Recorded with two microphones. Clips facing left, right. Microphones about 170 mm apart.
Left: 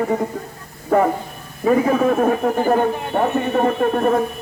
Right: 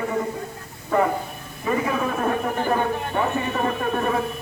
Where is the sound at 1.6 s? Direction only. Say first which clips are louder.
Left 8 dB; 45° left (ahead or behind).